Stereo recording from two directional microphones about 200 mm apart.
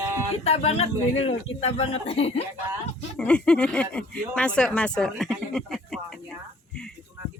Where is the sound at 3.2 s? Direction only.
5° left (ahead or behind).